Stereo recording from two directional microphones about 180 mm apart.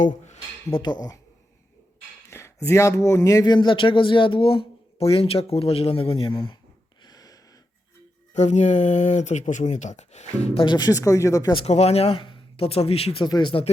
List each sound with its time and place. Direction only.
0.7 s speech: 25° left (ahead or behind)
2.3 s speech: 15° left (ahead or behind)
7.0 s a sound: 20° left (ahead or behind)
8.3 s speech: 40° left (ahead or behind); by 11.5 s 20° left (ahead or behind)
11.5 s speech: 35° left (ahead or behind)